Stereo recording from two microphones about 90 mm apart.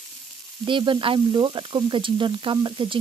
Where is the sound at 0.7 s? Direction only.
65° right (ahead or behind).